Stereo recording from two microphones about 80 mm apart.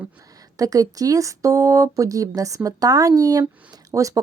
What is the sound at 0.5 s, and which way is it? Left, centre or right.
Speech, right.